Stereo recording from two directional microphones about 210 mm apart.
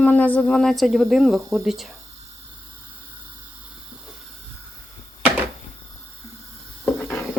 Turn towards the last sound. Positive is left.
turn(degrees=10)  # may be behind; listen again after turning